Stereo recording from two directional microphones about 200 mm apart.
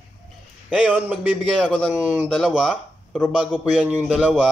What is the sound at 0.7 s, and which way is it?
A man's voice, 5° right (ahead or behind).